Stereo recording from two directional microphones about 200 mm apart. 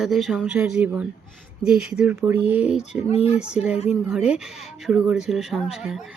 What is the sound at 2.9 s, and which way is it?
Speech, 30° left (ahead or behind).